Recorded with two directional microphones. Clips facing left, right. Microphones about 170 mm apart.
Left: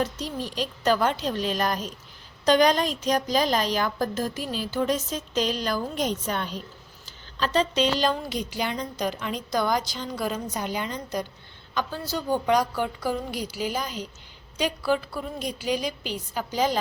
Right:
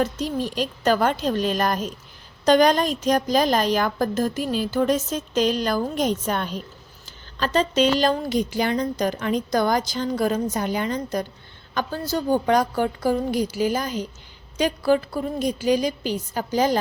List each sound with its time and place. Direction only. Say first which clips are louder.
0.0 s a woman's voice: right 5 dB; 50° right (ahead or behind)